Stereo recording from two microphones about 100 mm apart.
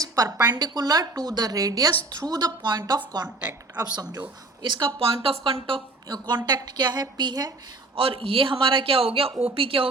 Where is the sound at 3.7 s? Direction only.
40° right (ahead or behind); by 5.8 s 70° right (ahead or behind).